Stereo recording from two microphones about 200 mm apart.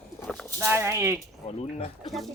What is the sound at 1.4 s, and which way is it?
Speech, 30° left (ahead or behind).